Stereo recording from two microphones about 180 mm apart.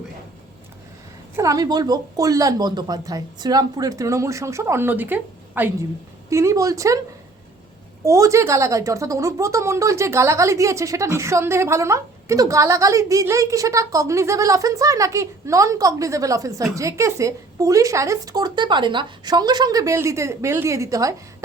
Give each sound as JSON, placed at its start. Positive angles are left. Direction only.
{"t": 1.4, "sound": "speech", "side_deg": -20}
{"t": 8.0, "sound": "speech", "side_deg": -15}